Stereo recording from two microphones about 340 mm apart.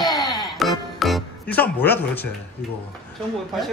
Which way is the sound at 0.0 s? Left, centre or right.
Centre.